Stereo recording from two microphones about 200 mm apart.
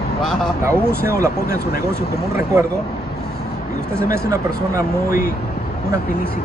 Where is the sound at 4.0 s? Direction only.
15° right (ahead or behind).